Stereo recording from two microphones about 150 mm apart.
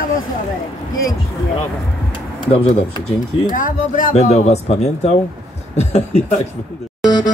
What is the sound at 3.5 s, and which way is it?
Speech, 65° left (ahead or behind).